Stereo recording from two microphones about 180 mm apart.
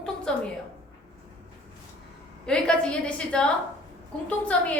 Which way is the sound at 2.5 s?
5° left (ahead or behind).